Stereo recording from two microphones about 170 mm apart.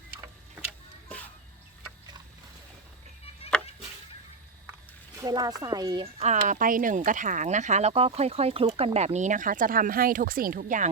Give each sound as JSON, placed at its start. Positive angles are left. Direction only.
{"t": 5.1, "sound": "speech", "side_deg": -20}
{"t": 6.4, "sound": "speech", "side_deg": -55}